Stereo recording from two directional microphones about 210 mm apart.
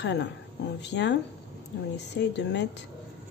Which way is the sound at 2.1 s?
55° left (ahead or behind).